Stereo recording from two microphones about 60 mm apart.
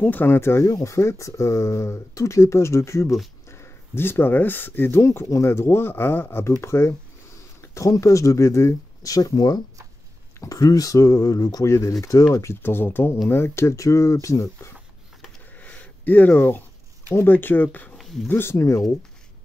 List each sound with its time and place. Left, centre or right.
0.0 s speech: left
0.7 s speech: left
5.0 s speech: left
7.8 s speech: left
9.0 s speech: left
10.4 s speech: left
12.6 s speech: left
15.6 s a sound: left
17.1 s speech: left
17.9 s a sound: centre
18.3 s speech: left